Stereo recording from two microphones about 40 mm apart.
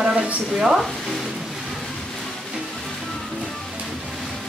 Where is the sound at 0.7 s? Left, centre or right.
Centre.